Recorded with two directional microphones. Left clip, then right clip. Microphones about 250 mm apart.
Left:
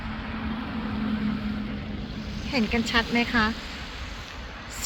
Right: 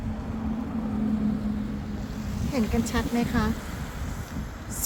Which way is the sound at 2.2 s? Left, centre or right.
Right.